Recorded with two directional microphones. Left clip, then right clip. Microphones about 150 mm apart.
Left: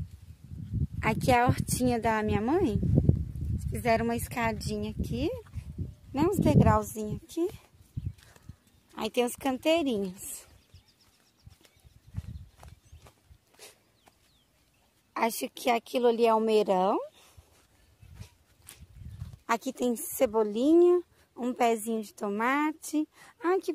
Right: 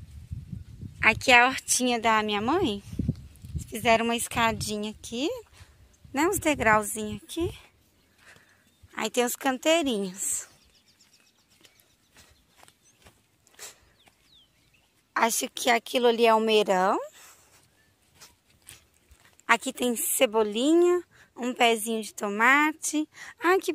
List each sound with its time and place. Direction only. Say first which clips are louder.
0.9 s speech: right 7 dB; 10° left (ahead or behind)
3.5 s a woman's voice: right 4 dB; 5° right (ahead or behind)
8.9 s a woman's voice: right 2 dB; centre (ahead or behind)
12.1 s horse: left 4 dB; centre (ahead or behind)
13.6 s a sound: right 6 dB; centre (ahead or behind)
15.1 s a woman's voice: right 5 dB; 5° right (ahead or behind)
18.2 s walk: right 5 dB; 5° left (ahead or behind)
19.4 s a woman's voice: right 5 dB; centre (ahead or behind)
23.3 s speech: right 5 dB; 15° right (ahead or behind)